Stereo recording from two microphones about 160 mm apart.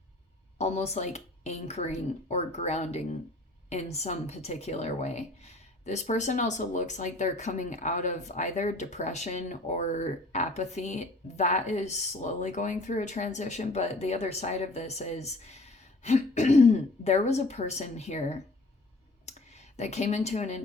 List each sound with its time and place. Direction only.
0.6 s a woman's voice: 40° left (ahead or behind)
19.2 s clicking: 45° left (ahead or behind)